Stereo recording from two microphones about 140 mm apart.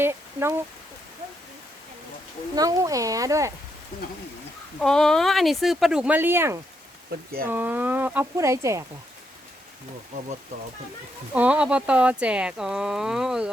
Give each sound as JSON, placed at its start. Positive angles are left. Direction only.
{"t": 0.0, "sound": "speech", "side_deg": -20}
{"t": 2.6, "sound": "speech", "side_deg": -25}
{"t": 4.8, "sound": "speech", "side_deg": 5}
{"t": 11.3, "sound": "speech", "side_deg": -10}